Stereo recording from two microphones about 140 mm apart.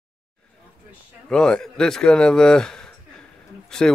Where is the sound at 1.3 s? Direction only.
5° left (ahead or behind).